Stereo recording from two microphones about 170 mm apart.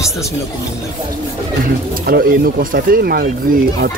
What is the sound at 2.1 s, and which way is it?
Speech, 60° right (ahead or behind).